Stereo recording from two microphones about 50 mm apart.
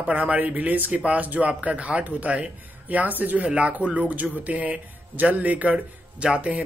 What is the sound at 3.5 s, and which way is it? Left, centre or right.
A man's voice, right.